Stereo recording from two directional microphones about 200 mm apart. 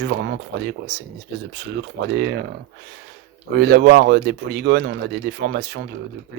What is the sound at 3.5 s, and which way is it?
Speech, 55° right (ahead or behind).